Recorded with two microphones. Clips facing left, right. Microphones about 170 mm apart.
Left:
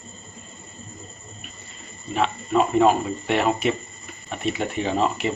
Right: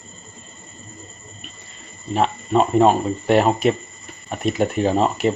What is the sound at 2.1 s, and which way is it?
Speech, 35° right (ahead or behind).